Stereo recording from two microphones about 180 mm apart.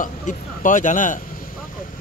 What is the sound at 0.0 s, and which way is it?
Speech, 45° left (ahead or behind).